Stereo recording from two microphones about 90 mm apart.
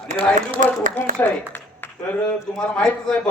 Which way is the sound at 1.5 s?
20° left (ahead or behind).